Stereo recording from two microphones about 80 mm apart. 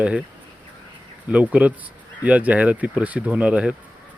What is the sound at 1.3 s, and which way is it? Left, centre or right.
Speech, centre.